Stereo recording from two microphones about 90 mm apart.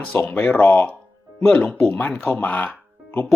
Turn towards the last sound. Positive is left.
turn(degrees=20)  # may be behind; listen again after turning